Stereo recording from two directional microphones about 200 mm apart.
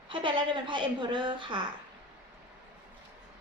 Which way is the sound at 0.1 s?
25° right (ahead or behind).